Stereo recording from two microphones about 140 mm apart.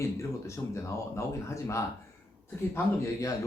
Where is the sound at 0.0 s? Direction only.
20° left (ahead or behind).